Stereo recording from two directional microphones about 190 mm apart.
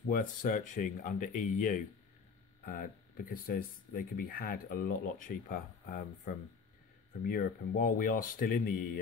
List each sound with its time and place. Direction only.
0.1 s speech: 45° left (ahead or behind)